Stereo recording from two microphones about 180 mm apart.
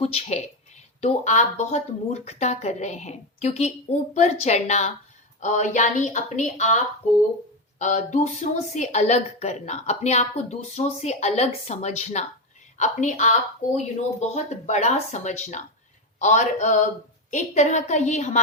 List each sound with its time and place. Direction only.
0.0 s a woman's voice: 35° left (ahead or behind)